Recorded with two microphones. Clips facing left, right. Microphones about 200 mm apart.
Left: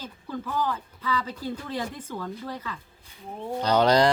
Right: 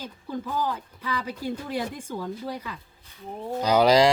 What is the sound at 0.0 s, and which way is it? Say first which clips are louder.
Speech: right 2 dB; 15° right (ahead or behind).